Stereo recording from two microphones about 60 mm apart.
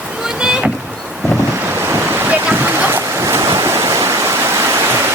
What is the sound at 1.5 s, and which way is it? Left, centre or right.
Waves, right.